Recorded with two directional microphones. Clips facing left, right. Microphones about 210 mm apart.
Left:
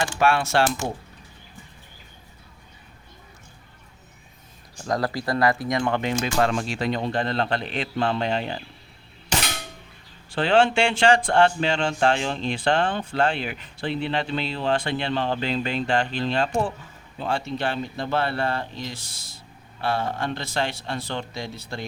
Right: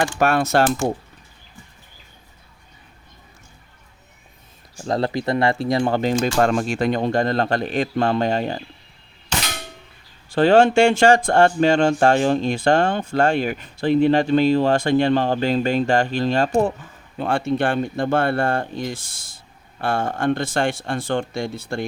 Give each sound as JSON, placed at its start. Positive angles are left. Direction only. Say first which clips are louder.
{"t": 0.0, "sound": "speech", "louder": "right 3 dB", "side_deg": -45}
{"t": 4.9, "sound": "speech", "louder": "right 4 dB", "side_deg": -25}
{"t": 10.2, "sound": "speech", "louder": "right 6 dB", "side_deg": -40}
{"t": 17.2, "sound": "speech", "louder": "right 6 dB", "side_deg": -55}